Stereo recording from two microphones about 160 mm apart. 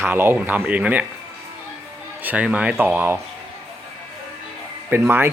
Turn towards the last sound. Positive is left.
turn(degrees=-10)  # may be behind; listen again after turning